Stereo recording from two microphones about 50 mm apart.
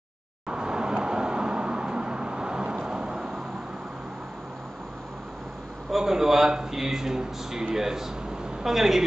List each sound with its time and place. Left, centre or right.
0.5 s vehicle: centre
5.9 s a man's voice: centre